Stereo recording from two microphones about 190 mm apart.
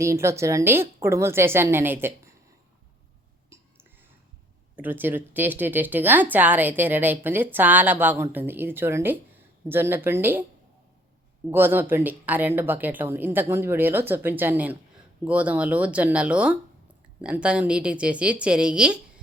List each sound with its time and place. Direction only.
0.0 s a woman's voice: 15° right (ahead or behind)
3.5 s whispering: 15° right (ahead or behind)
4.8 s a woman's voice: 10° right (ahead or behind)
11.5 s a woman's voice: 10° right (ahead or behind)